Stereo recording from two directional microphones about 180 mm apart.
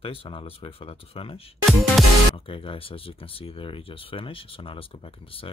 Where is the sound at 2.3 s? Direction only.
30° left (ahead or behind).